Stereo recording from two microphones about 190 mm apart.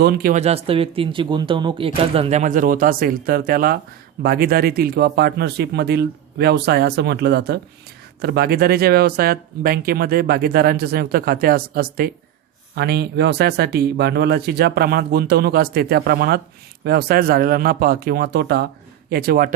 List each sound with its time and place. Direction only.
0.0 s speech: 50° right (ahead or behind)
0.3 s speech: 35° right (ahead or behind); by 19.5 s 50° right (ahead or behind)